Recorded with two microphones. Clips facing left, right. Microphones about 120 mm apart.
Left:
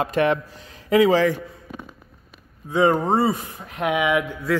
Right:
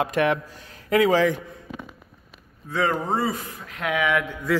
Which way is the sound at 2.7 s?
20° left (ahead or behind).